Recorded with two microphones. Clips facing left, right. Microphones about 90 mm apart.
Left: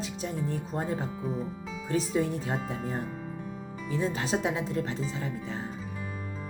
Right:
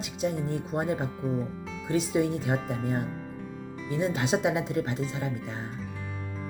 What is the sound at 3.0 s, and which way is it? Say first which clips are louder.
Music: even; centre (ahead or behind).